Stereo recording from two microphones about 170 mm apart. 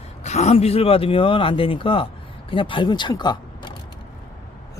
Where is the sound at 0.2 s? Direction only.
40° left (ahead or behind).